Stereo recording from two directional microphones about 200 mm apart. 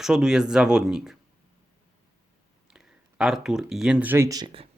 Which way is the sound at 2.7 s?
5° right (ahead or behind).